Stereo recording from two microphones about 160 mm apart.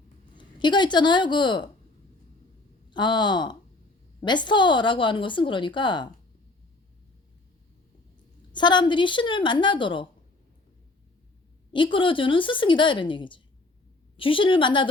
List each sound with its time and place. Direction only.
0.3 s speech: 30° left (ahead or behind)
2.9 s speech: 30° left (ahead or behind)
8.5 s speech: 30° left (ahead or behind)
11.7 s speech: 30° left (ahead or behind)